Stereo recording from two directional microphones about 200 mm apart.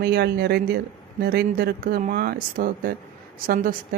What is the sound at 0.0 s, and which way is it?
Speech, 50° right (ahead or behind).